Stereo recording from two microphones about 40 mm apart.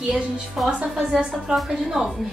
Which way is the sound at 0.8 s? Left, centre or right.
Right.